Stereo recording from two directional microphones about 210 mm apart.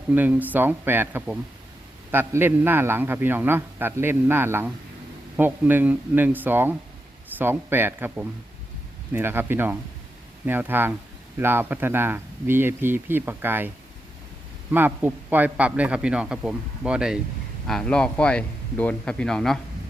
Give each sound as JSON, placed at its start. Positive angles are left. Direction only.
{"t": 0.1, "sound": "a man's voice", "side_deg": -10}
{"t": 14.7, "sound": "a man's voice", "side_deg": -10}